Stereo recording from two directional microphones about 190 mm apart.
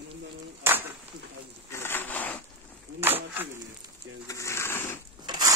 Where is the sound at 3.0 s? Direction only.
10° right (ahead or behind).